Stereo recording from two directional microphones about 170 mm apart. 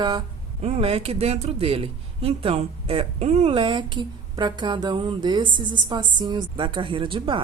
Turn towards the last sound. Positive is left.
turn(degrees=-30)  # may be behind; listen again after turning